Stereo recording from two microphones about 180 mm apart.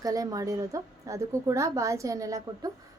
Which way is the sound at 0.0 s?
20° right (ahead or behind).